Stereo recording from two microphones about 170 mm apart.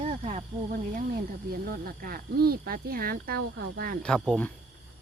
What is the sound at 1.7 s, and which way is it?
Speech, 60° right (ahead or behind).